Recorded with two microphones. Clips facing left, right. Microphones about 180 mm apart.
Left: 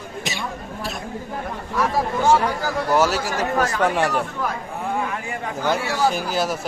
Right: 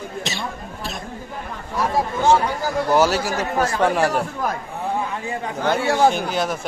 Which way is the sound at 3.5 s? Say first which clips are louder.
Right 1 dB; 30° right (ahead or behind).